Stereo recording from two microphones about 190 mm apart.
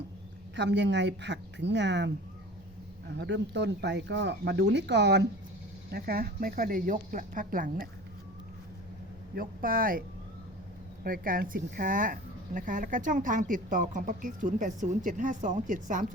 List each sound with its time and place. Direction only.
0.5 s a woman's voice: 65° right (ahead or behind)
3.2 s speech: 65° right (ahead or behind); by 7.9 s 45° right (ahead or behind)
9.3 s speech: 50° right (ahead or behind)
11.0 s speech: 50° right (ahead or behind)